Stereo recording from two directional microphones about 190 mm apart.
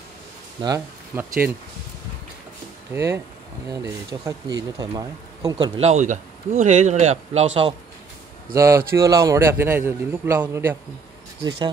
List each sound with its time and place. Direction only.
0.6 s a man's voice: 15° right (ahead or behind)
2.9 s a man's voice: 15° right (ahead or behind)
5.8 s speech: 35° right (ahead or behind)
8.5 s a man's voice: 15° right (ahead or behind)
11.4 s speech: 25° right (ahead or behind)